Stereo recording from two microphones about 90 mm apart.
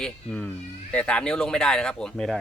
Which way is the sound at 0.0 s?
10° left (ahead or behind).